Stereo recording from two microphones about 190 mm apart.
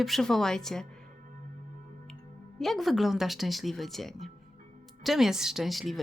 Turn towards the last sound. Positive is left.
turn(degrees=0)  # may be behind; listen again after turning